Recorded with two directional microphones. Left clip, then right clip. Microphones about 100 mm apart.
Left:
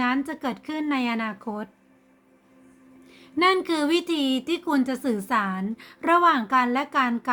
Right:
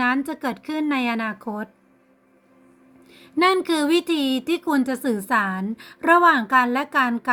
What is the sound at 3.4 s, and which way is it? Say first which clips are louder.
Speech: right 2 dB; 35° right (ahead or behind).